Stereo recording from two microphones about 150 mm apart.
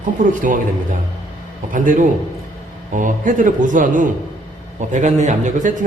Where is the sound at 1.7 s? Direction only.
60° right (ahead or behind).